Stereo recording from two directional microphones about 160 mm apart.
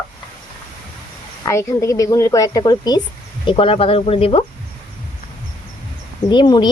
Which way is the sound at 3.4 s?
35° left (ahead or behind).